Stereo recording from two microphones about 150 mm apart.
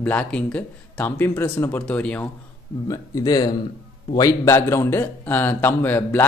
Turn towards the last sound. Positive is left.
turn(degrees=15)  # may be behind; listen again after turning